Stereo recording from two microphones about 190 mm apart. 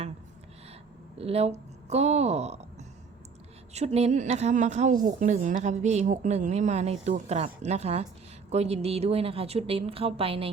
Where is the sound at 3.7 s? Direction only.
35° right (ahead or behind).